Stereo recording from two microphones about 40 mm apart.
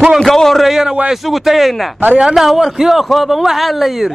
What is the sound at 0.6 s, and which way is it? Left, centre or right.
A man's voice, centre.